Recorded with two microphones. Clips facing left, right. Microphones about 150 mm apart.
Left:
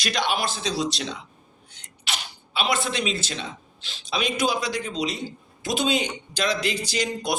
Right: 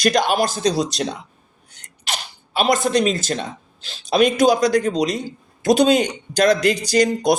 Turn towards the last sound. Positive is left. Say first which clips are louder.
# right 10 dB
turn(degrees=-40)  # may be behind; listen again after turning